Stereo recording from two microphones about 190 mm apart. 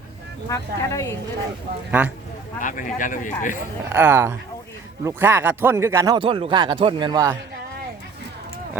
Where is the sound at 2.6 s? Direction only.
45° left (ahead or behind).